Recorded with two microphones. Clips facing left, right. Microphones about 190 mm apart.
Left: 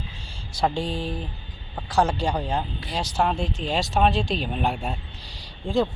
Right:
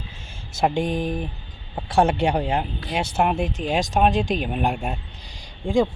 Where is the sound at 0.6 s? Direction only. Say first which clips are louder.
Right 3 dB; 20° right (ahead or behind).